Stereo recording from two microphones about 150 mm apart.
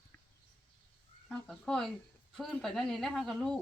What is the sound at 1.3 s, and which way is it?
A woman's voice, 5° left (ahead or behind).